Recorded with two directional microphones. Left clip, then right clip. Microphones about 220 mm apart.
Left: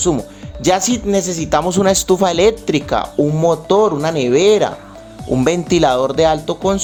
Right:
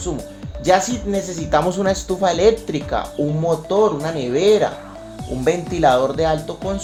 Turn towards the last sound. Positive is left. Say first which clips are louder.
# left 6 dB
turn(degrees=35)  # may be behind; listen again after turning